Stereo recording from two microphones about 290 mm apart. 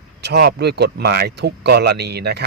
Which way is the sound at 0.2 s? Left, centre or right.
Right.